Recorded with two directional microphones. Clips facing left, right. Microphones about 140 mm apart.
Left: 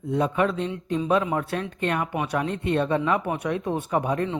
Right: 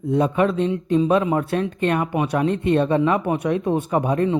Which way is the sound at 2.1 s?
20° right (ahead or behind).